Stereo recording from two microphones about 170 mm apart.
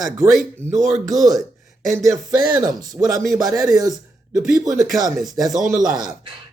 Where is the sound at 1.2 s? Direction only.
Centre (ahead or behind).